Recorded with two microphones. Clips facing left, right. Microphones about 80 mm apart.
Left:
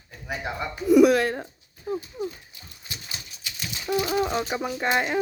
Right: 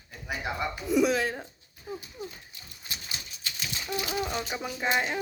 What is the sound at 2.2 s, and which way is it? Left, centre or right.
Dog, left.